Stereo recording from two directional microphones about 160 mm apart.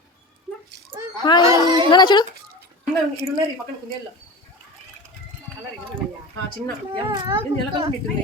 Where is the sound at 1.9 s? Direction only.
25° left (ahead or behind).